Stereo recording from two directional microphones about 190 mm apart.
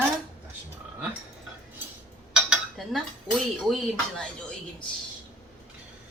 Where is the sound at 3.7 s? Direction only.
5° left (ahead or behind).